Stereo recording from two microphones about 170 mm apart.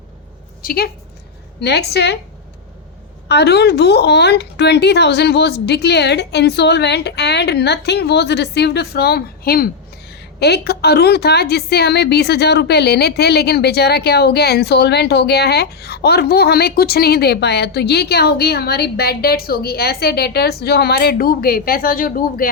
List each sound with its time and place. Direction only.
0.6 s speech: 60° left (ahead or behind)
1.6 s a woman's voice: 75° left (ahead or behind)
3.2 s a woman's voice: 75° left (ahead or behind)
10.1 s a woman's voice: 75° left (ahead or behind); by 22.4 s 55° left (ahead or behind)